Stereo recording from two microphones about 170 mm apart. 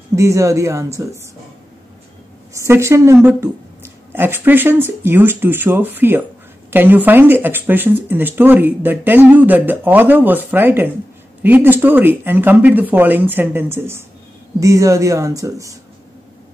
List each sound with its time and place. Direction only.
0.1 s speech: 15° right (ahead or behind)
2.5 s speech: 15° right (ahead or behind)